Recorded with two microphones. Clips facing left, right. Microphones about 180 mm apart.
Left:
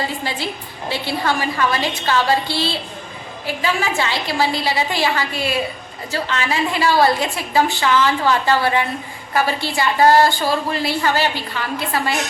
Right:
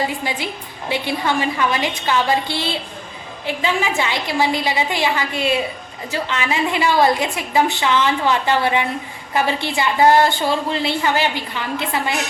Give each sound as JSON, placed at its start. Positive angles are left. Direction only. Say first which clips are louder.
{"t": 0.9, "sound": "a woman's voice", "louder": "even", "side_deg": -15}